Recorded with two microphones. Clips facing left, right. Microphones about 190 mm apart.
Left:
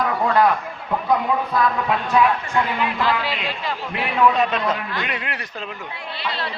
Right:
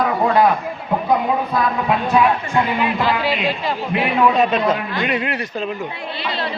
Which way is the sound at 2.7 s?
10° right (ahead or behind).